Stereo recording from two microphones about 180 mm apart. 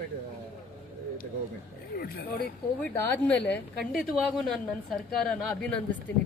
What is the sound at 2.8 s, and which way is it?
Speech, 10° left (ahead or behind).